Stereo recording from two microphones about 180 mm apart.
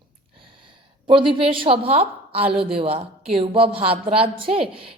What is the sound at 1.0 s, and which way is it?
A woman's voice, 30° right (ahead or behind).